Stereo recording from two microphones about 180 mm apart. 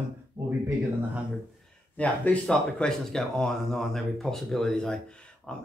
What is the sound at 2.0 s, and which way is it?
Speech, 10° left (ahead or behind).